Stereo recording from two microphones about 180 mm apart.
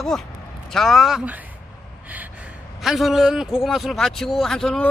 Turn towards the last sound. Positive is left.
turn(degrees=5)  # may be behind; listen again after turning